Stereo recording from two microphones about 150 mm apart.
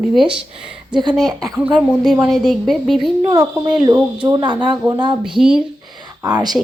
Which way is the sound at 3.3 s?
30° right (ahead or behind).